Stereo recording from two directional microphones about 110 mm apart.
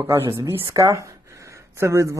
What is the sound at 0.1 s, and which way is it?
A man's voice, 25° right (ahead or behind).